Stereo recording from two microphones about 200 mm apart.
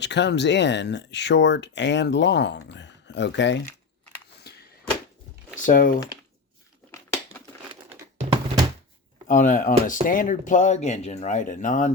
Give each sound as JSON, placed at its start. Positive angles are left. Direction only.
{"t": 0.0, "sound": "speech", "side_deg": 60}
{"t": 4.5, "sound": "a sound", "side_deg": 55}
{"t": 5.5, "sound": "speech", "side_deg": 40}
{"t": 6.9, "sound": "crumpling", "side_deg": 15}
{"t": 9.2, "sound": "speech", "side_deg": 40}